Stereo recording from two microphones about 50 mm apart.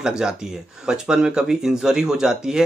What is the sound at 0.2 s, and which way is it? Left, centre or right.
A man's voice, centre.